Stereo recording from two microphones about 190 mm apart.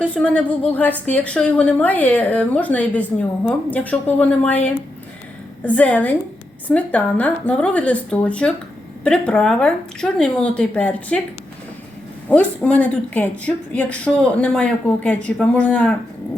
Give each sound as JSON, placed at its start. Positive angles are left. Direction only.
{"t": 0.0, "sound": "a woman's voice", "side_deg": 5}
{"t": 12.3, "sound": "a woman's voice", "side_deg": 10}